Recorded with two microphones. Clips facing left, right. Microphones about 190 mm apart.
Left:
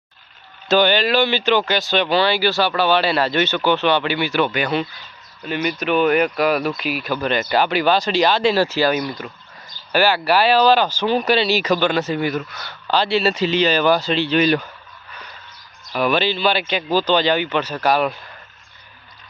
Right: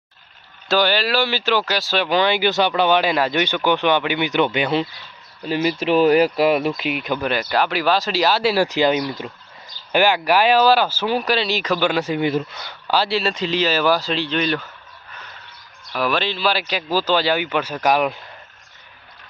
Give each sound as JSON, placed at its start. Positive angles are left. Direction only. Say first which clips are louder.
{"t": 0.7, "sound": "speech", "louder": "left 3 dB", "side_deg": 0}
{"t": 2.0, "sound": "speech", "louder": "right 2 dB", "side_deg": -15}
{"t": 7.3, "sound": "speech", "louder": "left 3 dB", "side_deg": 0}
{"t": 11.8, "sound": "speech", "louder": "even", "side_deg": -10}
{"t": 12.3, "sound": "speech", "louder": "right 3 dB", "side_deg": -25}
{"t": 12.9, "sound": "speech", "louder": "left 2 dB", "side_deg": -5}
{"t": 16.0, "sound": "speech", "louder": "left 3 dB", "side_deg": 0}